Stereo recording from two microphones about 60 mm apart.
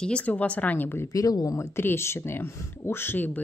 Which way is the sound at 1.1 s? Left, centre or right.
Left.